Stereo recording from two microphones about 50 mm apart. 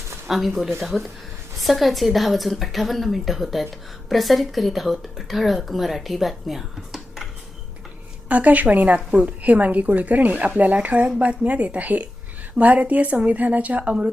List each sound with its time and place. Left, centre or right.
0.3 s speech: centre
8.3 s a woman's voice: right